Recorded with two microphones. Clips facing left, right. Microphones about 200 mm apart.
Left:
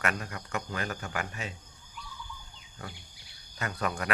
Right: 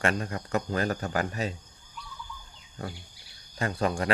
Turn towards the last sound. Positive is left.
turn(degrees=-30)  # may be behind; listen again after turning